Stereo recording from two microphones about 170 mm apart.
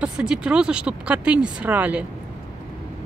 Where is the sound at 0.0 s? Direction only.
5° right (ahead or behind).